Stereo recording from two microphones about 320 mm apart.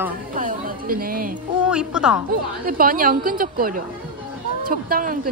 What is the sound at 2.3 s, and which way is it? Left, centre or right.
A woman's voice, right.